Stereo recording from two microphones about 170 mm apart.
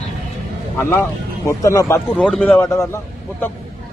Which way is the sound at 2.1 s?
5° left (ahead or behind).